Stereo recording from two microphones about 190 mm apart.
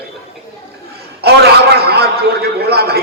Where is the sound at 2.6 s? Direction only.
55° right (ahead or behind).